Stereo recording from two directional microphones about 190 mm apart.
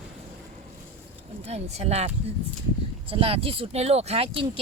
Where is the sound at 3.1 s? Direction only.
30° right (ahead or behind).